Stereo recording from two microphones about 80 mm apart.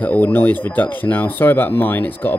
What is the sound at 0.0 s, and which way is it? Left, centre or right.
Speech, left.